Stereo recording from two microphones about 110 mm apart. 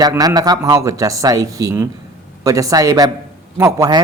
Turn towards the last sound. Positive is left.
turn(degrees=-30)  # may be behind; listen again after turning